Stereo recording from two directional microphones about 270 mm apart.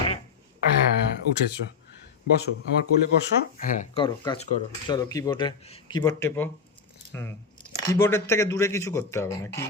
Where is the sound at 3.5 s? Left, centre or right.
Left.